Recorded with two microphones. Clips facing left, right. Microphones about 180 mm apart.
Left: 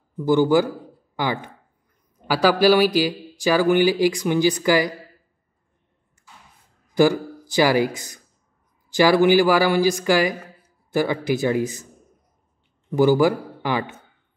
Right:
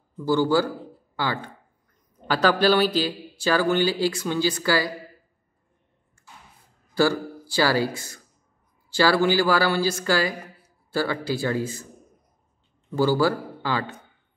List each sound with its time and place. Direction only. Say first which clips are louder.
0.2 s speech: left 4 dB; 15° left (ahead or behind)
6.9 s speech: left 4 dB; 15° left (ahead or behind)
12.9 s speech: left 4 dB; 15° left (ahead or behind)